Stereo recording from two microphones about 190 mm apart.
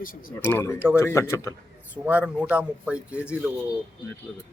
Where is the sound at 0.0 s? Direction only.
50° left (ahead or behind).